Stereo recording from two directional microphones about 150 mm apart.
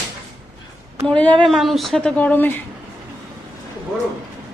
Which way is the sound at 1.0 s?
10° left (ahead or behind).